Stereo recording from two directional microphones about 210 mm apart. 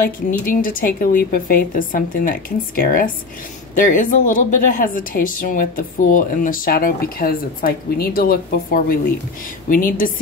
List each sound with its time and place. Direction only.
0.0 s a woman's voice: 40° left (ahead or behind)